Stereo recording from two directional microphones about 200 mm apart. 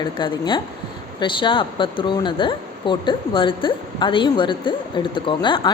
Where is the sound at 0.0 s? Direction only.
20° left (ahead or behind).